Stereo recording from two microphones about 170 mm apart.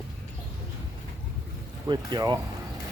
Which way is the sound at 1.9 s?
25° right (ahead or behind).